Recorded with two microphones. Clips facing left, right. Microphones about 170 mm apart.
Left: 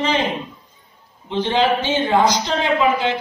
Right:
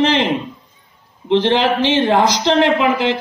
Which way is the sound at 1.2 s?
85° right.